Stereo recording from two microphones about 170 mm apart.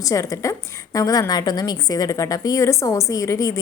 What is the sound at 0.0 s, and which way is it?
A woman's voice, 20° left (ahead or behind).